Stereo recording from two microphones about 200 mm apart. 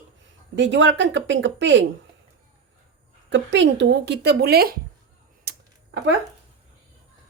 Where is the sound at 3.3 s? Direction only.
65° right (ahead or behind).